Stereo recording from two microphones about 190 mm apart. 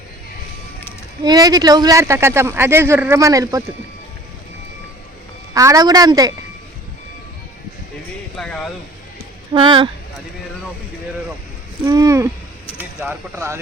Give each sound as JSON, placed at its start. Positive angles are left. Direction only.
{"t": 1.2, "sound": "speech", "side_deg": -20}
{"t": 5.5, "sound": "a woman's voice", "side_deg": -20}
{"t": 8.4, "sound": "speech", "side_deg": 5}
{"t": 9.5, "sound": "a woman's voice", "side_deg": -25}
{"t": 11.9, "sound": "speech", "side_deg": -20}